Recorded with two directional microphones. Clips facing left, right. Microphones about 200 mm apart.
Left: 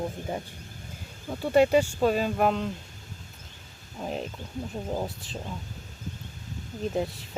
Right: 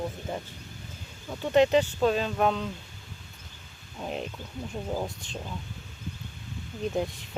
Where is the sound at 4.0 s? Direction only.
Centre (ahead or behind).